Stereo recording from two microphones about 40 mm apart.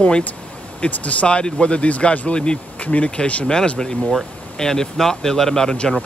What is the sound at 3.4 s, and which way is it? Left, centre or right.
Speech, centre.